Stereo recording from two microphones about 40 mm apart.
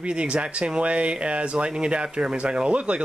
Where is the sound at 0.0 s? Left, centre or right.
Right.